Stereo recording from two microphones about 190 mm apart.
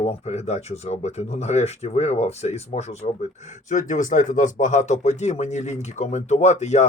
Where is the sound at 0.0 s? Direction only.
35° left (ahead or behind).